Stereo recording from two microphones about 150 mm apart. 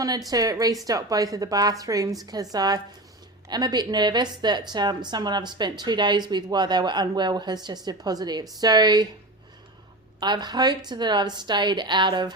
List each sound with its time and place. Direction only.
0.3 s speech: 25° right (ahead or behind)
10.2 s speech: 30° right (ahead or behind)